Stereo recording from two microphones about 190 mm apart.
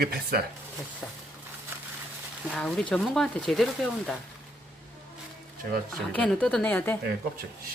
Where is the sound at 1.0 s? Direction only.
Centre (ahead or behind).